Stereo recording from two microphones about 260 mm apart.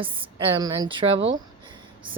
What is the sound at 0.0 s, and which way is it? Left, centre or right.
Speech, centre.